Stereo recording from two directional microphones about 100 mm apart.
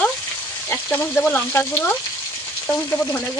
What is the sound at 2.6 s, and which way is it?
Speech, 20° left (ahead or behind).